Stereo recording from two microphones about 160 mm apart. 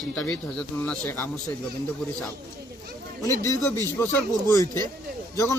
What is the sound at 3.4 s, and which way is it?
A man's voice, 15° left (ahead or behind).